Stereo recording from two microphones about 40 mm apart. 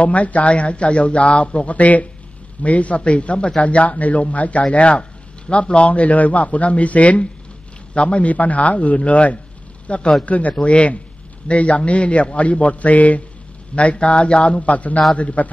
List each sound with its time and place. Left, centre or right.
0.0 s a man's voice: left
10.2 s a man's voice: left